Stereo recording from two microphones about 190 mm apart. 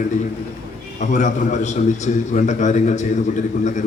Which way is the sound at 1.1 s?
40° left (ahead or behind).